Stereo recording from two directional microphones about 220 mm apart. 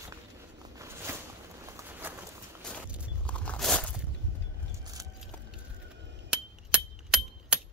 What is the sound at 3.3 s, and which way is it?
Crunch, 5° left (ahead or behind).